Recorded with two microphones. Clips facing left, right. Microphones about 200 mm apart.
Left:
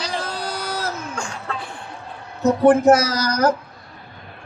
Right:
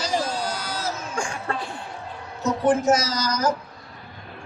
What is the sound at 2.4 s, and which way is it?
A woman's voice, 60° left (ahead or behind).